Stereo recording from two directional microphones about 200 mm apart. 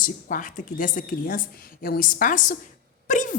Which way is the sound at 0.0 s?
40° left (ahead or behind).